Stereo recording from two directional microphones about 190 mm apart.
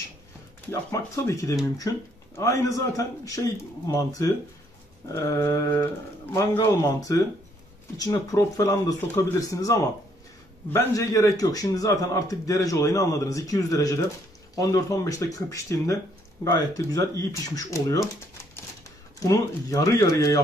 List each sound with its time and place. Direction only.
0.7 s speech: 15° left (ahead or behind)
19.1 s speech: 15° left (ahead or behind)